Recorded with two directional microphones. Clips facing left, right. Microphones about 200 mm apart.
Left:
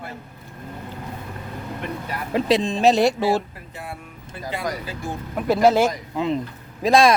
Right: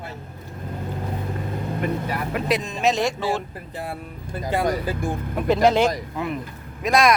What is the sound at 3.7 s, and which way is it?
Speech, 35° right (ahead or behind).